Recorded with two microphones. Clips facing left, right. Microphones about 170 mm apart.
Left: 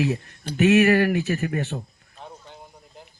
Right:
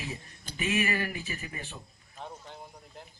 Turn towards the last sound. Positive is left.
turn(degrees=0)  # may be behind; listen again after turning